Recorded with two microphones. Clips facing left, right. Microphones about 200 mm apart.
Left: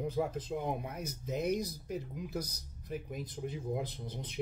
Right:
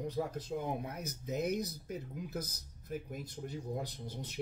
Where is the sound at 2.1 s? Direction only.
5° right (ahead or behind).